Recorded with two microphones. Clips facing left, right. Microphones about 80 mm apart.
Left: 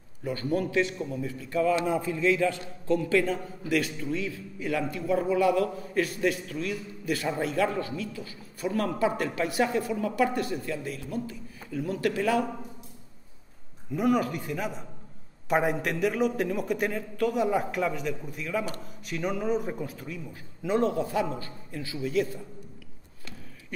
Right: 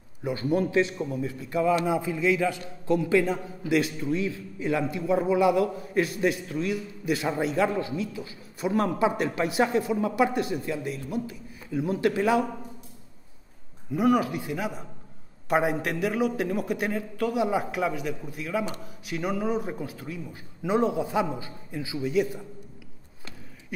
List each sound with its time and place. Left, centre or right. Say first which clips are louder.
0.2 s a man's voice: right 3 dB; centre
2.9 s a man's voice: right 2 dB; centre
13.9 s a man's voice: right 2 dB; centre